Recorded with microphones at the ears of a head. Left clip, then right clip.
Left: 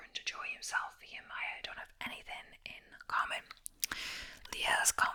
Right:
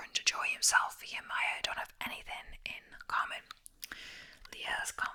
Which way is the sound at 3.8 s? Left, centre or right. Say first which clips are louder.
Left 8 dB; left.